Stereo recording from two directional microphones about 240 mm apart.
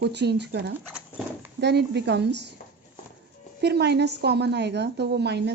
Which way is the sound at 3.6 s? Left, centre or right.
Right.